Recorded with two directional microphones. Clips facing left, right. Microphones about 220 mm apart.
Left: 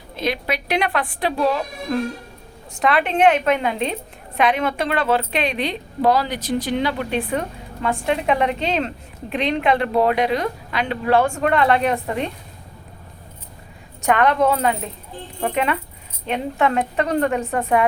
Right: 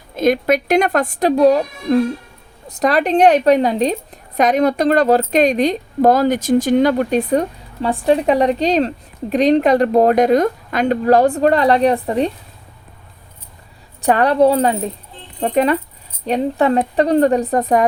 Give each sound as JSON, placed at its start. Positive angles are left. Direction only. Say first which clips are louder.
{"t": 0.2, "sound": "a woman's voice", "louder": "right 9 dB", "side_deg": -45}
{"t": 14.0, "sound": "a woman's voice", "louder": "right 5 dB", "side_deg": -35}